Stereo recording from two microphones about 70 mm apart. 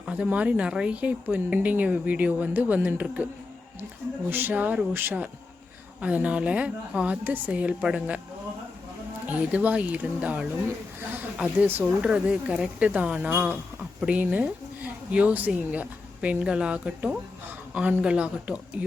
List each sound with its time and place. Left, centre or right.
0.0 s speech: centre
4.3 s speech: right
9.2 s speech: right
11.5 s a woman's voice: right